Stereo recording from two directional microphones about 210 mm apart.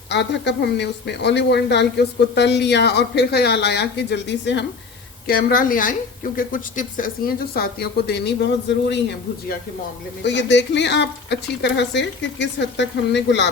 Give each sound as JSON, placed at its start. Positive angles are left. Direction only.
{"t": 0.1, "sound": "speech", "side_deg": 55}
{"t": 5.3, "sound": "speech", "side_deg": 45}